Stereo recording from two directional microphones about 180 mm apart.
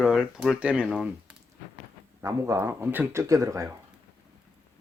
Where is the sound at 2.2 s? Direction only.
15° right (ahead or behind).